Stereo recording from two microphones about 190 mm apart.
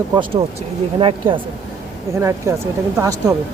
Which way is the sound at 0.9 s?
25° right (ahead or behind).